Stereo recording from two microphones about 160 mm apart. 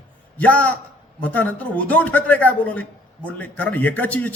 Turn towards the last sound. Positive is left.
turn(degrees=10)  # may be behind; listen again after turning